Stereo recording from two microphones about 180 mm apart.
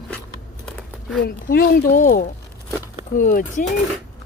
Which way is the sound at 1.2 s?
55° left (ahead or behind).